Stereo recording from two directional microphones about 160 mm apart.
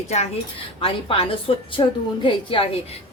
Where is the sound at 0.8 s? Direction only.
35° left (ahead or behind).